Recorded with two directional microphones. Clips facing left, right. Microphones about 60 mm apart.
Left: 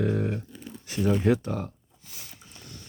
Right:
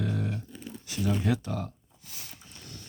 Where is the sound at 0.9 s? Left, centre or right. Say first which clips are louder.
Left 5 dB; left.